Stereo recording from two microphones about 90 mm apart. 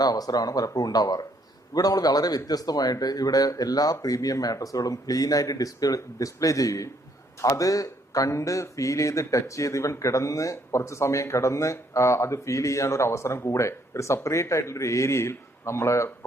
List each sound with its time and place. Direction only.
0.0 s a man's voice: 45° left (ahead or behind); by 16.1 s 30° left (ahead or behind)